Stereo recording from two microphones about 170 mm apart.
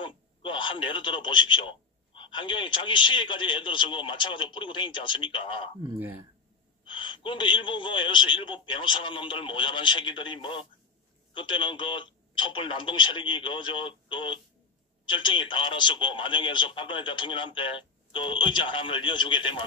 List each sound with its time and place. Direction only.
0.0 s speech: 30° left (ahead or behind)
6.8 s speech: 30° left (ahead or behind)